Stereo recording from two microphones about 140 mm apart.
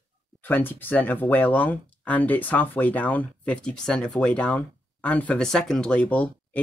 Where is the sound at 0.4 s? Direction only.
15° left (ahead or behind).